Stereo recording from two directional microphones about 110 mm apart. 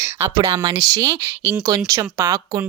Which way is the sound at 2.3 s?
40° right (ahead or behind).